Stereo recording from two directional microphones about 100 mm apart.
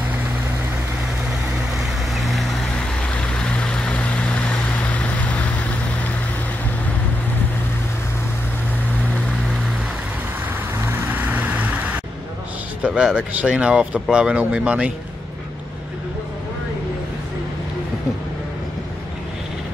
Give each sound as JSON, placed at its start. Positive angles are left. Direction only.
{"t": 2.1, "sound": "vehicle", "side_deg": 0}
{"t": 10.8, "sound": "vehicle", "side_deg": -20}
{"t": 12.8, "sound": "a sound", "side_deg": -10}
{"t": 13.3, "sound": "speech", "side_deg": -10}